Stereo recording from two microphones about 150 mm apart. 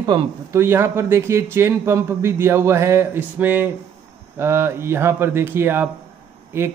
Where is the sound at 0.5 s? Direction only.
15° right (ahead or behind).